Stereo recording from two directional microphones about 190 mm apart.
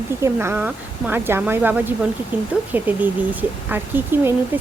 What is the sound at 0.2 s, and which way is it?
Speech, 10° right (ahead or behind).